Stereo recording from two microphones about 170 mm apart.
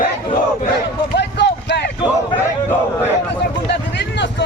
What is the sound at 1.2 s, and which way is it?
Clip-clop, 80° left.